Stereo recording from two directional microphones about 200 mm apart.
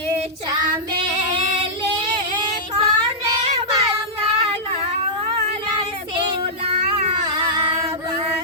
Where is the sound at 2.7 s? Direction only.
20° right (ahead or behind).